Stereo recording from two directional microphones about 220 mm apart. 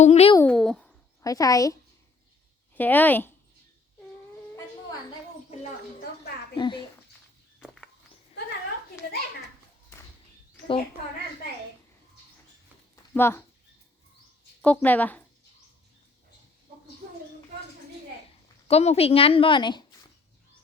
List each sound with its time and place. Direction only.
0.0 s speech: 30° left (ahead or behind)
0.3 s speech: 5° left (ahead or behind)
1.2 s speech: 15° left (ahead or behind)
2.7 s a woman's voice: 10° left (ahead or behind)
6.6 s speech: 20° left (ahead or behind)
7.6 s walk: centre (ahead or behind)
13.1 s speech: 10° left (ahead or behind)
14.6 s speech: 5° left (ahead or behind)
18.7 s a woman's voice: 30° left (ahead or behind)